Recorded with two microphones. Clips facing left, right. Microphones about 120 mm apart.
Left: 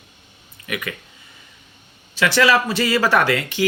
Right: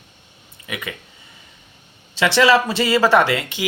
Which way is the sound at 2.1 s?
25° right (ahead or behind).